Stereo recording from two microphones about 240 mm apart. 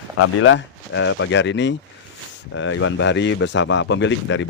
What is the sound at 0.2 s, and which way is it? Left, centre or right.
A man's voice, left.